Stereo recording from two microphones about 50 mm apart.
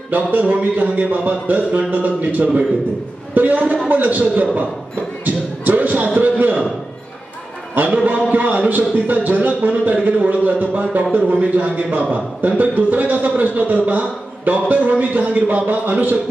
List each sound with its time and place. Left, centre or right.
0.1 s a man's voice: right
5.2 s a sound: right
7.7 s a man's voice: right